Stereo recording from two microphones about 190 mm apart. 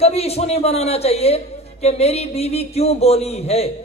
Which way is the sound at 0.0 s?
35° left (ahead or behind).